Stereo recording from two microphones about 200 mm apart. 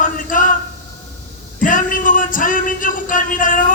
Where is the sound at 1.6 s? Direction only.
40° left (ahead or behind).